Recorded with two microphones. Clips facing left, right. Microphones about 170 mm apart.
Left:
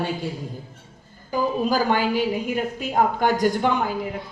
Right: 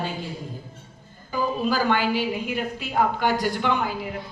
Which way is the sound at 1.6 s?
40° left (ahead or behind).